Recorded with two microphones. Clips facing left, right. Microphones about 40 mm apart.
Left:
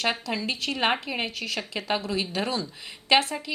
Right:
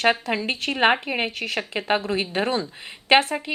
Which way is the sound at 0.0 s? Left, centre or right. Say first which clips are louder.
Right 6 dB; right.